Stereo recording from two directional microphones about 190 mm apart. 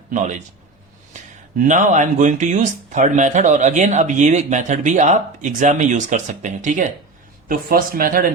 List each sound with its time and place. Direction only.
0.1 s speech: 40° right (ahead or behind)